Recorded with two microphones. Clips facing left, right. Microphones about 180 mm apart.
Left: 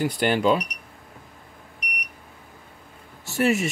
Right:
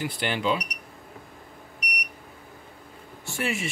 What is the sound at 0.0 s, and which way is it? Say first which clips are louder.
Speech: left 6 dB; 45° left (ahead or behind).